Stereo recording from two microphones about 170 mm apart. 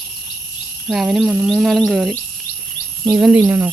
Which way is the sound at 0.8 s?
Centre (ahead or behind).